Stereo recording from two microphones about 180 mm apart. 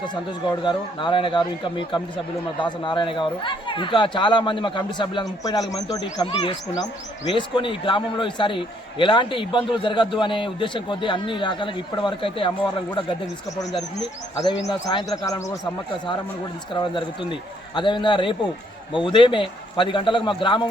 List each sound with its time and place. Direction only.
0.1 s speech: 25° left (ahead or behind)
14.7 s speech: 25° left (ahead or behind)
17.7 s speech: 25° left (ahead or behind)